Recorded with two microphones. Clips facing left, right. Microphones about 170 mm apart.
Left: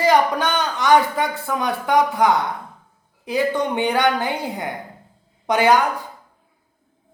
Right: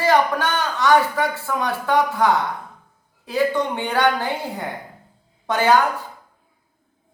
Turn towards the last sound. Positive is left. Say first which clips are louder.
# left 2 dB
turn(degrees=15)  # may be behind; listen again after turning